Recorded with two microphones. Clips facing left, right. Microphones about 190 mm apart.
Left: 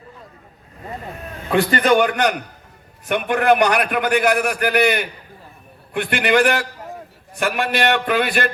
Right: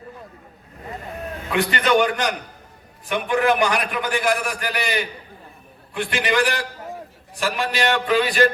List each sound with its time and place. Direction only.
1.5 s a man's voice: 35° left (ahead or behind)
3.1 s a man's voice: 60° left (ahead or behind)